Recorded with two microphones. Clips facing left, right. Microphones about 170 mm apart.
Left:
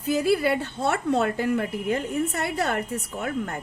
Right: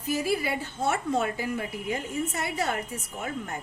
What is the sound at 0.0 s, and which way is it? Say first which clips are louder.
A woman's voice: left 6 dB; 65° left (ahead or behind).